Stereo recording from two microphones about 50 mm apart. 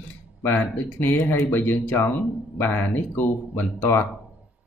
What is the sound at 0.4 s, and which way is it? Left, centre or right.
Speech, left.